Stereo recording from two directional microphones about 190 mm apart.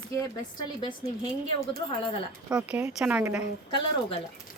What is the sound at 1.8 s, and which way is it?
Speech, 25° left (ahead or behind).